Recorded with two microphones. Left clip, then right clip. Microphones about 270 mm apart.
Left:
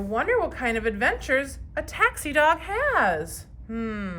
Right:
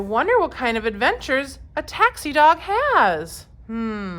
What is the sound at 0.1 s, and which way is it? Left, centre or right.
Speech, centre.